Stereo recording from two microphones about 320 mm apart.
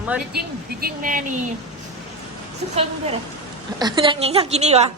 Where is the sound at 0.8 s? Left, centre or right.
Right.